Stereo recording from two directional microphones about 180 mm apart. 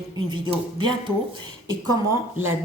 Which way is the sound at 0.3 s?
25° right (ahead or behind).